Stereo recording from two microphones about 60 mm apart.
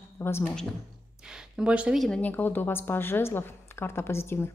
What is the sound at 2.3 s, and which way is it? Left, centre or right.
A woman's voice, left.